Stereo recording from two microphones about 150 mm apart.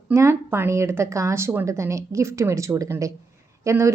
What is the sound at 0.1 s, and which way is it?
A woman's voice, 15° right (ahead or behind).